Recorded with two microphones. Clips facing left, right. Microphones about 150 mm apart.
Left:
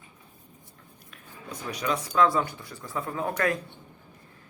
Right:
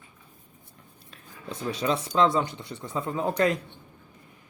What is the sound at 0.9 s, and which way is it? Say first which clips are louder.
Speech: left 1 dB; 25° right (ahead or behind).